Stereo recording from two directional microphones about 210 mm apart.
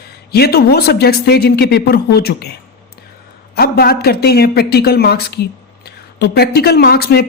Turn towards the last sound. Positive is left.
turn(degrees=50)  # may be behind; listen again after turning